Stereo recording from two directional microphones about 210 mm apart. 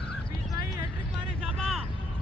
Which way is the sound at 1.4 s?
Centre (ahead or behind).